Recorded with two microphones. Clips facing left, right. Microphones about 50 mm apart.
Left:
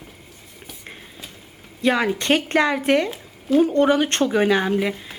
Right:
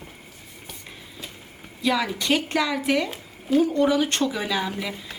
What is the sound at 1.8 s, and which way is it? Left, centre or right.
Speech, left.